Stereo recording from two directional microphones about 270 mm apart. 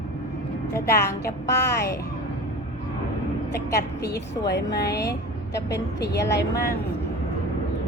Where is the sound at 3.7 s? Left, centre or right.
Left.